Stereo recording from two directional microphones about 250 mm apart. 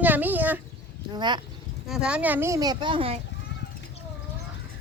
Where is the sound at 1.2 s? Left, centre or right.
Centre.